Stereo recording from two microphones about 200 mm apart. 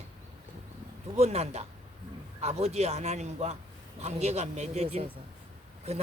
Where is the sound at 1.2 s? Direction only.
30° right (ahead or behind).